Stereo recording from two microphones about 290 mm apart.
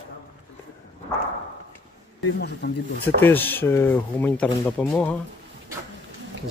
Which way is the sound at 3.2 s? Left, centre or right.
Centre.